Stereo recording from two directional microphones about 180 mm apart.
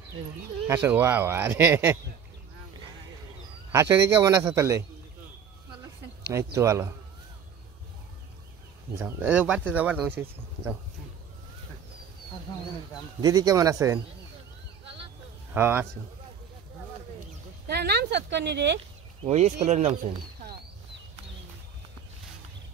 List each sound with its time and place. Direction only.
0.8 s speech: 10° right (ahead or behind)
3.7 s speech: 15° right (ahead or behind)
6.3 s speech: 15° right (ahead or behind)
8.9 s speech: 10° right (ahead or behind)
13.2 s speech: 20° right (ahead or behind)
15.5 s speech: 10° right (ahead or behind)
17.6 s speech: 65° right (ahead or behind)
19.2 s speech: 35° right (ahead or behind)